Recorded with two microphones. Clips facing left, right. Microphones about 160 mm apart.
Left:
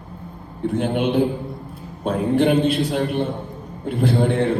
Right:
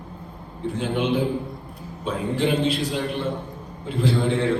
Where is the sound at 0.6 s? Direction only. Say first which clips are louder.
Left 3 dB; 55° left (ahead or behind).